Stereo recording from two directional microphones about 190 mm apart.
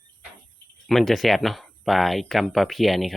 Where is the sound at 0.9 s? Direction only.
Centre (ahead or behind).